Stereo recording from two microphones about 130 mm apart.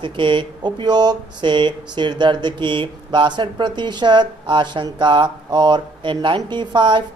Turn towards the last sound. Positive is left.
turn(degrees=-35)  # may be behind; listen again after turning